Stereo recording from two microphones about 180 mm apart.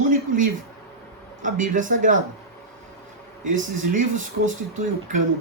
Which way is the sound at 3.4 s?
45° right (ahead or behind).